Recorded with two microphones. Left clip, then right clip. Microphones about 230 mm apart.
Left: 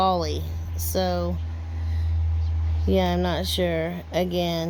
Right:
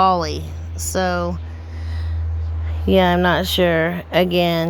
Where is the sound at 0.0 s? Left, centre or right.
Centre.